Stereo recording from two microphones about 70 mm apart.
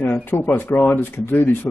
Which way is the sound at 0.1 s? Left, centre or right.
Left.